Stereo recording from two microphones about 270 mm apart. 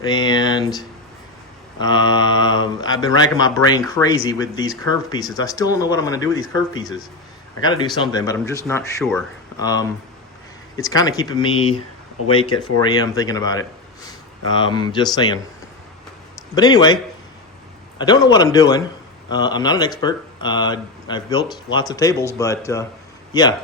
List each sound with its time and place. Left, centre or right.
0.0 s speech: centre
12.8 s speech: centre
16.6 s speech: centre